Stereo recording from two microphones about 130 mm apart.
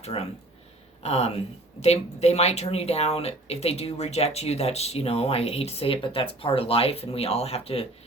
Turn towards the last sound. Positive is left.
turn(degrees=50)  # may be behind; listen again after turning